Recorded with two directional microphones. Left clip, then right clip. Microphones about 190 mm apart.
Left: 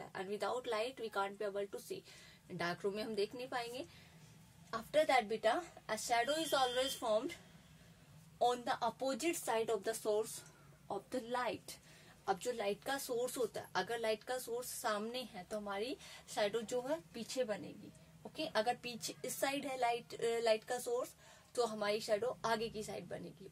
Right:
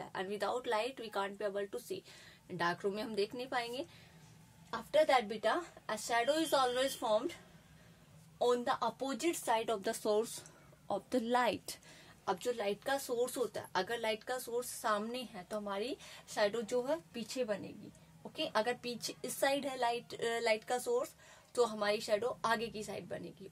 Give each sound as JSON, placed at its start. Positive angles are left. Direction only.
{"t": 0.1, "sound": "a woman's voice", "side_deg": -25}
{"t": 8.4, "sound": "a woman's voice", "side_deg": -25}
{"t": 11.1, "sound": "a woman's voice", "side_deg": -50}
{"t": 12.3, "sound": "a woman's voice", "side_deg": -25}